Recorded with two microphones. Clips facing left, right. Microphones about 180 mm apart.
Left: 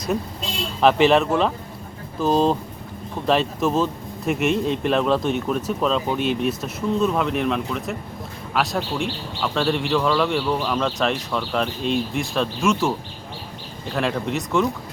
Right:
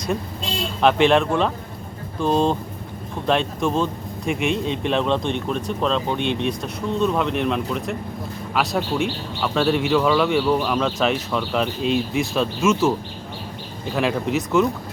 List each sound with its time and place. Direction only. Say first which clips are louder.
0.8 s speech: left 1 dB; centre (ahead or behind)